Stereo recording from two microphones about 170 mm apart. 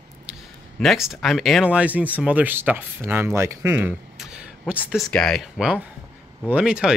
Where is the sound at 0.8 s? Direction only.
Centre (ahead or behind).